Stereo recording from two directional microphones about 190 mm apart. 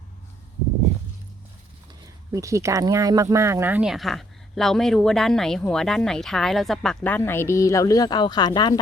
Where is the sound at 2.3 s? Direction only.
15° right (ahead or behind).